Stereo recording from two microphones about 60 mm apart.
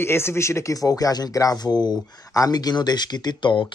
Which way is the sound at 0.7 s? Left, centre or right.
Left.